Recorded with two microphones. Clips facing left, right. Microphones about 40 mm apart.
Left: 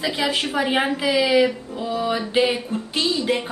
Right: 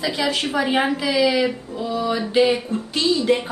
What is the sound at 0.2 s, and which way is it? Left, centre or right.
Speech, centre.